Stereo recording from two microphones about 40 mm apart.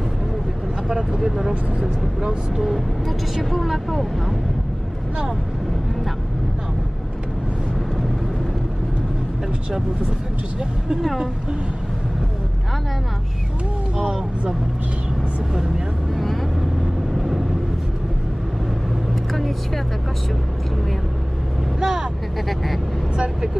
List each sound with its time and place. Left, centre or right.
0.8 s vehicle: centre
3.3 s speech: centre
16.8 s vehicle: centre
21.7 s speech: centre